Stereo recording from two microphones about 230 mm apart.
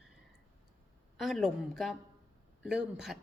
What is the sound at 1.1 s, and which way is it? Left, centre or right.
A woman's voice, centre.